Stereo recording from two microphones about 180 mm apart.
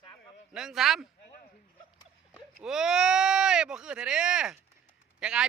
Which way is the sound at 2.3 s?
5° right (ahead or behind).